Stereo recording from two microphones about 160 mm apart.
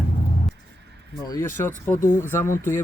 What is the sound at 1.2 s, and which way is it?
Speech, 20° left (ahead or behind).